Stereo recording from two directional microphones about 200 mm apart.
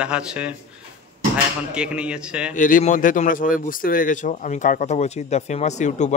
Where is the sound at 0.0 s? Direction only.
5° right (ahead or behind).